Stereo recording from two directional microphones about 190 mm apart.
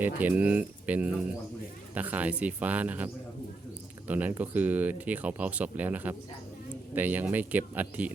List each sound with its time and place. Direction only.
0.0 s speech: 10° right (ahead or behind)